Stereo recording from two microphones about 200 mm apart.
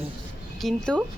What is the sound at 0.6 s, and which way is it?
Speech, centre (ahead or behind).